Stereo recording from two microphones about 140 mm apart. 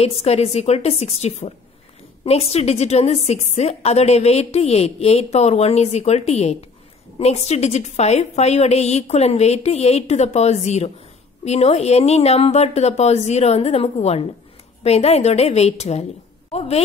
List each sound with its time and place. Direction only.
0.0 s a woman's voice: 50° left (ahead or behind)